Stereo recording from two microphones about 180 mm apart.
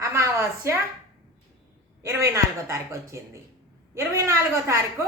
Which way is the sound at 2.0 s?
15° right (ahead or behind).